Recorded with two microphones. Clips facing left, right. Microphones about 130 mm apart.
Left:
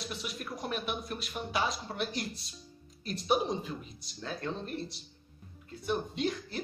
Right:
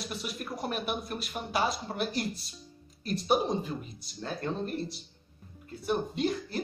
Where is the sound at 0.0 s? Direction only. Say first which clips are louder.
Right 2 dB; centre (ahead or behind).